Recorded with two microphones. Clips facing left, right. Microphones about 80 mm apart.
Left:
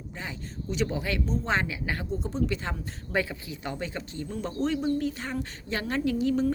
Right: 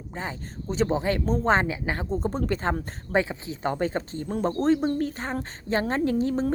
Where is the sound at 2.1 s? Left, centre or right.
Right.